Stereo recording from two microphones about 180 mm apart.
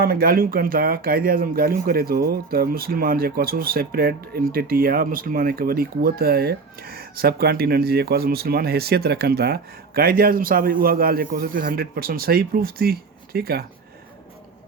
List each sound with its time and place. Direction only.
0.0 s speech: 55° right (ahead or behind)